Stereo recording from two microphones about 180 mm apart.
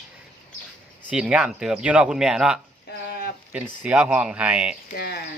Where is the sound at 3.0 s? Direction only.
60° left (ahead or behind).